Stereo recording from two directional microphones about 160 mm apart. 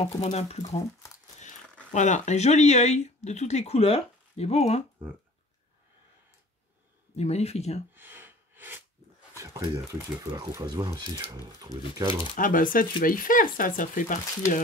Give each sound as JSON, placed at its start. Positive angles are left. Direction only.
{"t": 0.2, "sound": "speech", "side_deg": 45}
{"t": 1.9, "sound": "speech", "side_deg": 50}
{"t": 7.2, "sound": "speech", "side_deg": 40}
{"t": 7.9, "sound": "a sound", "side_deg": -10}
{"t": 9.3, "sound": "speech", "side_deg": -20}
{"t": 12.4, "sound": "speech", "side_deg": 55}